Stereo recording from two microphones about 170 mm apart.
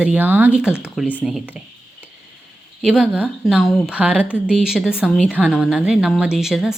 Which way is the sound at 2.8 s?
5° right (ahead or behind).